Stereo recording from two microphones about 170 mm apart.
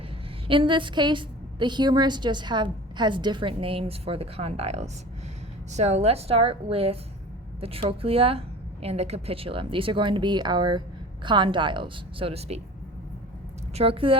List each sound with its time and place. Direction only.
0.4 s a woman's voice: 30° right (ahead or behind)
13.7 s a woman's voice: 35° right (ahead or behind)